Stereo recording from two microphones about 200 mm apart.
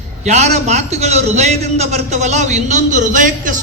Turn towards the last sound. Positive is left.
turn(degrees=-40)  # may be behind; listen again after turning